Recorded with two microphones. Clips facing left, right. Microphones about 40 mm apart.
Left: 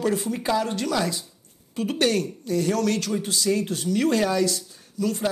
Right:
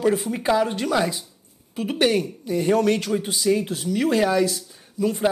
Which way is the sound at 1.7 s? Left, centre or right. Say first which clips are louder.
Right 2 dB; centre.